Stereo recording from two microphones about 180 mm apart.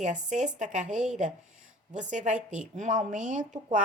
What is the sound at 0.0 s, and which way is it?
A woman's voice, 40° right (ahead or behind).